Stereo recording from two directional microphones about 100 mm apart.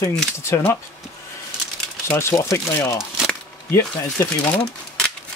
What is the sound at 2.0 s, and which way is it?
Speech, 30° left (ahead or behind).